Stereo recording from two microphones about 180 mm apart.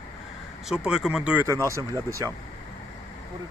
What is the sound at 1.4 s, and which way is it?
Speech, 15° right (ahead or behind).